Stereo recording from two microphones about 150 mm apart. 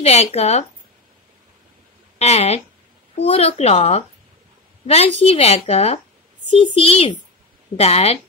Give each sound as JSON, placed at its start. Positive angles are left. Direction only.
{"t": 0.0, "sound": "speech", "side_deg": 45}
{"t": 2.1, "sound": "a woman's voice", "side_deg": 45}